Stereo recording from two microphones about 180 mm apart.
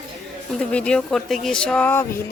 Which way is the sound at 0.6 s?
5° left (ahead or behind).